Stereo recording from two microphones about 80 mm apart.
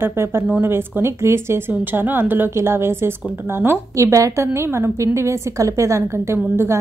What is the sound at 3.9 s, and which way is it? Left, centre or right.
Speech, right.